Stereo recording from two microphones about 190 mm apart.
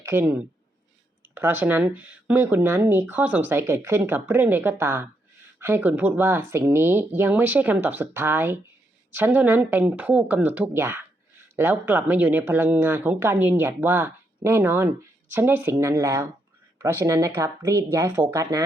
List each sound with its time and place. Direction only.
0.1 s speech: 10° right (ahead or behind)